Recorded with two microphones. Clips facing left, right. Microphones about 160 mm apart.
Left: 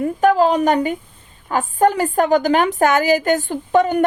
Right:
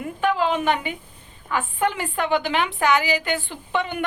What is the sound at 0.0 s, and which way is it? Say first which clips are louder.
A woman's voice: left 8 dB; 40° left (ahead or behind).